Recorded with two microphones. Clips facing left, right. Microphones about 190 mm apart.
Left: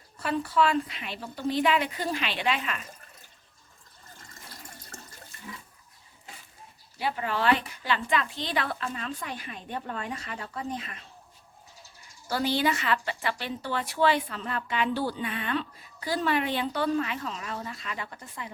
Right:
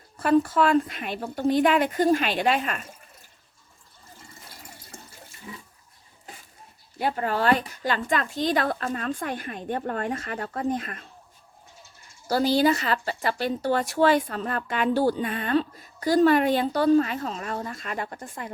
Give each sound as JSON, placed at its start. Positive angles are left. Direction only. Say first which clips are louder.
{"t": 0.2, "sound": "speech", "louder": "right 6 dB", "side_deg": -50}
{"t": 7.0, "sound": "speech", "louder": "right 3 dB", "side_deg": -45}
{"t": 12.3, "sound": "speech", "louder": "right 6 dB", "side_deg": -40}